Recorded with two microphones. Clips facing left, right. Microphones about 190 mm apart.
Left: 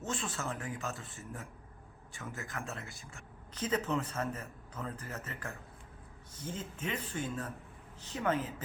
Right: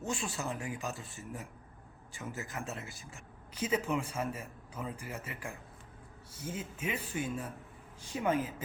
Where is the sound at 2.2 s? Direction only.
20° right (ahead or behind).